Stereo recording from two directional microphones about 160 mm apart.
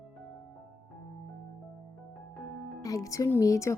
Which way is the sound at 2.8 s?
20° left (ahead or behind).